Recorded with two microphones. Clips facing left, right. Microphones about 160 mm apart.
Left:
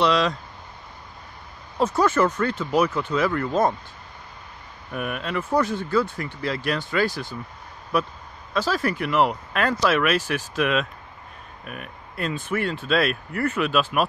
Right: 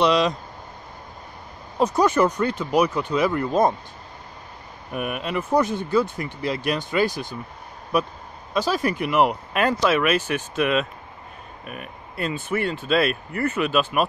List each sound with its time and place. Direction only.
0.0 s speech: 15° right (ahead or behind)
1.8 s speech: 15° right (ahead or behind)
4.9 s speech: 15° right (ahead or behind)
9.8 s speech: centre (ahead or behind)